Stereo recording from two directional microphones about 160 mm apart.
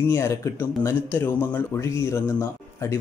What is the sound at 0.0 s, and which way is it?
Speech, 15° left (ahead or behind).